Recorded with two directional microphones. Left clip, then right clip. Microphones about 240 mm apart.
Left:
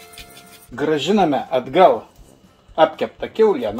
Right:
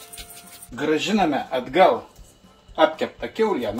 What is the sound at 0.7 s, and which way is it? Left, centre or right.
Speech, left.